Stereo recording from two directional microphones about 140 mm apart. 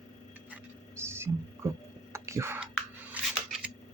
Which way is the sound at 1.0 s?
20° right (ahead or behind).